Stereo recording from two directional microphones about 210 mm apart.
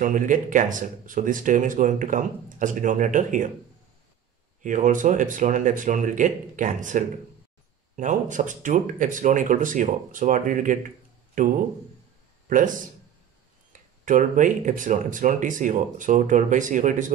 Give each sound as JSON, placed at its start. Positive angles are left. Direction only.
{"t": 0.0, "sound": "speech", "side_deg": -40}
{"t": 4.6, "sound": "speech", "side_deg": -40}
{"t": 14.0, "sound": "speech", "side_deg": -40}